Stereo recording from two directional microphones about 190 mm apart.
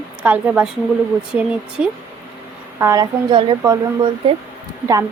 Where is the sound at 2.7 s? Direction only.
15° right (ahead or behind).